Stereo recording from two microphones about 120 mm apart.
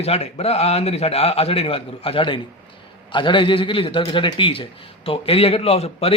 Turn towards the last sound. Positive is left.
turn(degrees=55)  # may be behind; listen again after turning